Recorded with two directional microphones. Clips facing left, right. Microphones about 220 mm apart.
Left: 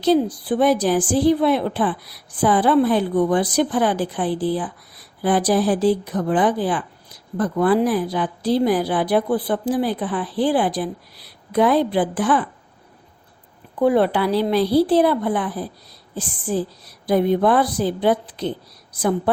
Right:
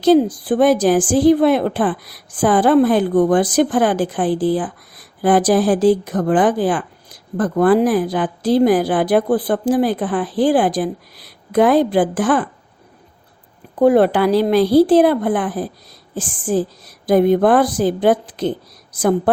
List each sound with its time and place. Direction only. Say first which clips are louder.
0.0 s a woman's voice: right 5 dB; 45° right (ahead or behind)
13.7 s a woman's voice: right 5 dB; 45° right (ahead or behind)